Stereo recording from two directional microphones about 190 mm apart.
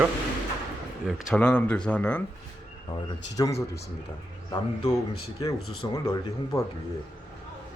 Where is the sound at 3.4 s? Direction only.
20° left (ahead or behind).